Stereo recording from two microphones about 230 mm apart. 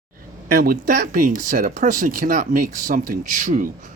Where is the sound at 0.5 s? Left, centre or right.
Right.